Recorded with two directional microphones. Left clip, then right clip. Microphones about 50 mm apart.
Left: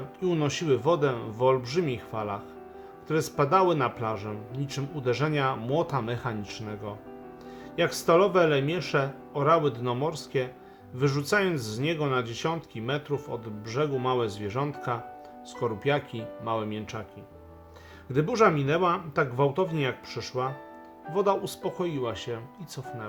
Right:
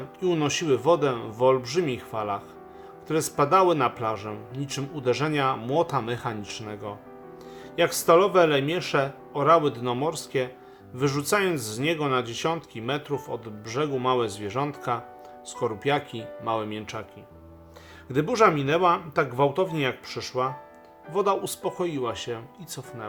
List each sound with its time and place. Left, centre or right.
0.2 s speech: right
18.1 s speech: right